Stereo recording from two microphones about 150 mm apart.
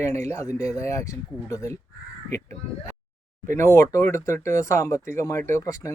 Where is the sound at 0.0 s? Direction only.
20° left (ahead or behind).